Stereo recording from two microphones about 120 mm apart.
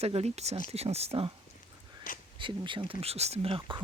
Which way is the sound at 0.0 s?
60° right (ahead or behind).